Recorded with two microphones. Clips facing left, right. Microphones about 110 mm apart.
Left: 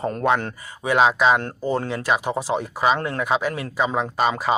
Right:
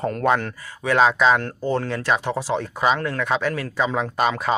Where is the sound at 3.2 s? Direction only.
10° left (ahead or behind).